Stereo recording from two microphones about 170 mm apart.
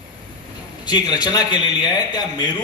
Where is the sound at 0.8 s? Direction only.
25° left (ahead or behind).